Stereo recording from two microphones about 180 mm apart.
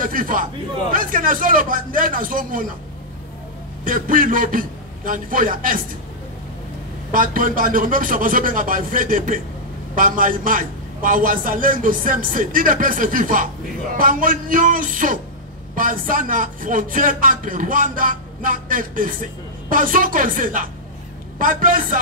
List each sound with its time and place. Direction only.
0.0 s a man's voice: 50° right (ahead or behind)
3.8 s a man's voice: 50° right (ahead or behind)
7.1 s a man's voice: 50° right (ahead or behind)